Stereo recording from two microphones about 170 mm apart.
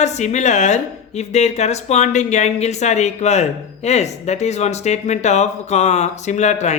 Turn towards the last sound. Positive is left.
turn(degrees=45)  # may be behind; listen again after turning